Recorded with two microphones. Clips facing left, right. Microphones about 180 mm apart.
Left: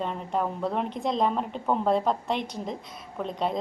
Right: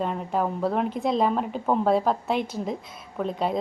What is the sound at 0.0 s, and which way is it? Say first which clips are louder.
A woman's voice: right 3 dB; 5° right (ahead or behind).